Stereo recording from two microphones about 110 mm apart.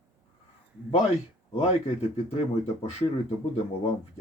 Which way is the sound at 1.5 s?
65° left (ahead or behind).